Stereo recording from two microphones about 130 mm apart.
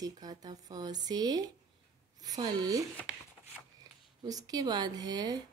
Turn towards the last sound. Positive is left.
turn(degrees=-30)  # may be behind; listen again after turning